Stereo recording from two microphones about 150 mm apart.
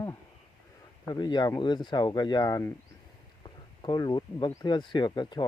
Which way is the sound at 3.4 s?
30° left (ahead or behind).